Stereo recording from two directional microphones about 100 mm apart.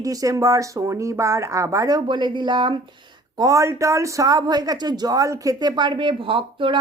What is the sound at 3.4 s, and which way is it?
Speech, 35° right (ahead or behind).